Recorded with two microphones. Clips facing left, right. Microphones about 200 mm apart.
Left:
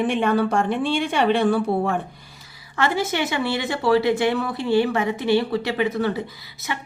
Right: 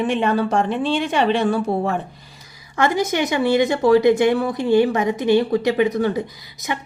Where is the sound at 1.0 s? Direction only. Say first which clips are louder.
Left 1 dB; 55° left (ahead or behind).